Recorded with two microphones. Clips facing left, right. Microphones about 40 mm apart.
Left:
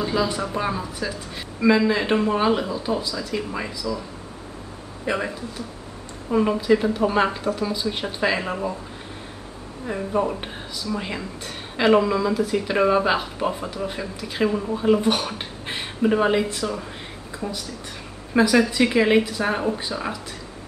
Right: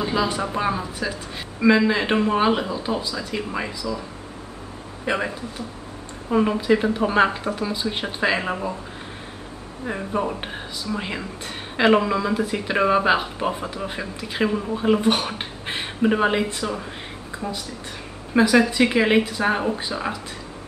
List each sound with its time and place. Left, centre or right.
0.0 s a sound: centre
0.3 s speech: right
0.6 s a woman's voice: centre
5.1 s speech: right
6.3 s a woman's voice: centre
9.8 s a woman's voice: centre
18.4 s a woman's voice: right
19.5 s a woman's voice: centre